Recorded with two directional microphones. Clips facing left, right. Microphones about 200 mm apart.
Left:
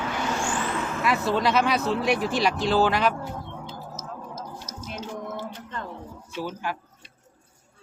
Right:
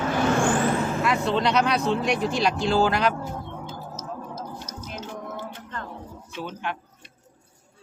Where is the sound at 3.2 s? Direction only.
50° right (ahead or behind).